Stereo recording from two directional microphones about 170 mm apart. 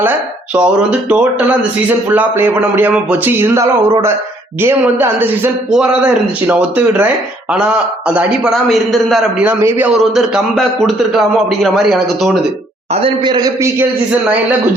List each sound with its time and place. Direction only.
0.5 s a man's voice: 5° right (ahead or behind)
12.9 s a man's voice: 35° right (ahead or behind)